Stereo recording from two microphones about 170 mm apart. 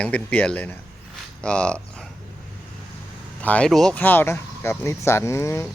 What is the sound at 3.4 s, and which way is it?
Speech, 5° left (ahead or behind).